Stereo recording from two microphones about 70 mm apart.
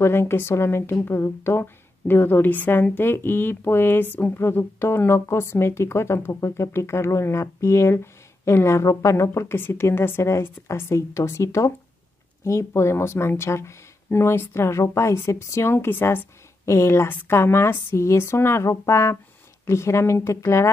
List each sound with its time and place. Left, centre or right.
0.0 s a woman's voice: left